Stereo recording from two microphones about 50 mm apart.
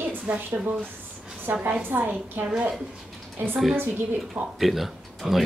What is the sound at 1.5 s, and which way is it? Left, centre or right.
Speech, right.